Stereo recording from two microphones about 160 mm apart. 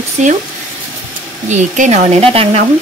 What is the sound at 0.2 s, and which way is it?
Speech, 50° right (ahead or behind).